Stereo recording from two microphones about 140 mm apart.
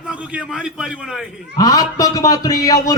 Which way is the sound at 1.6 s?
25° left (ahead or behind).